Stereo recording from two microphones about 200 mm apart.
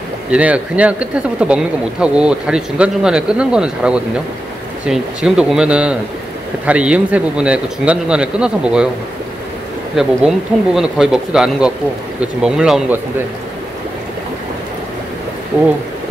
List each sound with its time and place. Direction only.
0.3 s speech: 5° right (ahead or behind)
9.9 s speech: 5° right (ahead or behind)